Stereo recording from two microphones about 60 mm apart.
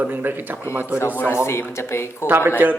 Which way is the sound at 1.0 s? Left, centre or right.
Left.